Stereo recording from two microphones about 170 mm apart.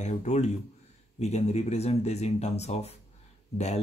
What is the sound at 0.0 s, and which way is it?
Speech, 40° left (ahead or behind).